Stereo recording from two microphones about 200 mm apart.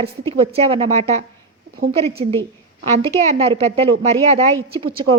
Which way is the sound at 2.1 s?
30° right (ahead or behind).